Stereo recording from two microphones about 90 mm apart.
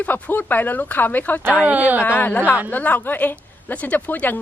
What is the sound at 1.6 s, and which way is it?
Speech, 15° right (ahead or behind).